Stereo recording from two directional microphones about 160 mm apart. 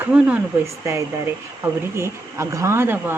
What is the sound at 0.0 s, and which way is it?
Speech, 5° right (ahead or behind).